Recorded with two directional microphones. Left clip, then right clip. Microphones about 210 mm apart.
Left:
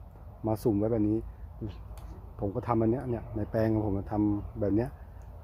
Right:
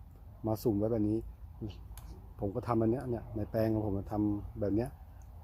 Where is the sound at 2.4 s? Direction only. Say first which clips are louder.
Left 3 dB; 5° right (ahead or behind).